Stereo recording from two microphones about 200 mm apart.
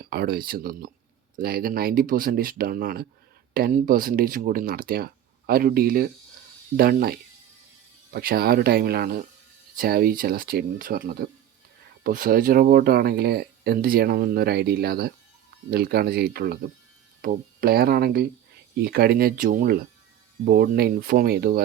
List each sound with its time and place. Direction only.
0.0 s speech: 50° right (ahead or behind)